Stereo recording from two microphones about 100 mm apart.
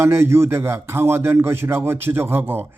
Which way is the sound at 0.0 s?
25° right (ahead or behind).